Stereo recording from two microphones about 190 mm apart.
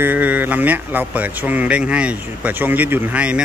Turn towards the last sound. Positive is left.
turn(degrees=-5)  # may be behind; listen again after turning